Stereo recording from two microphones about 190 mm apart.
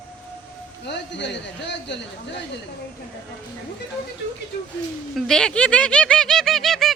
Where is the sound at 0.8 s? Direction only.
65° left (ahead or behind).